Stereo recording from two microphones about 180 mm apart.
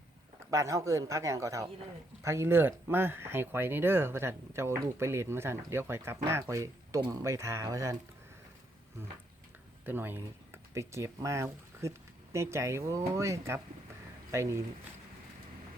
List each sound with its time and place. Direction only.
0.5 s speech: 15° right (ahead or behind)
9.8 s speech: 10° right (ahead or behind)